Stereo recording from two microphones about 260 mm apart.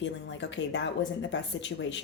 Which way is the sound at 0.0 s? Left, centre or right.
Left.